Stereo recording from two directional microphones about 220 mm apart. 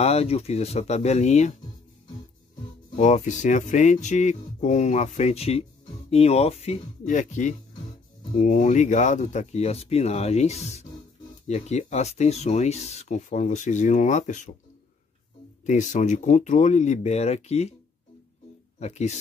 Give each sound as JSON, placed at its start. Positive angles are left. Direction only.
{"t": 0.0, "sound": "speech", "side_deg": 30}
{"t": 3.0, "sound": "speech", "side_deg": 35}
{"t": 15.6, "sound": "speech", "side_deg": 35}
{"t": 18.8, "sound": "speech", "side_deg": 30}